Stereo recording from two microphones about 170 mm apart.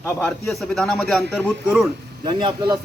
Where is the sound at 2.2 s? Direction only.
25° right (ahead or behind).